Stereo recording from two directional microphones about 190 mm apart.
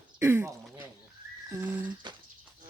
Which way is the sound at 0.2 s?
15° right (ahead or behind).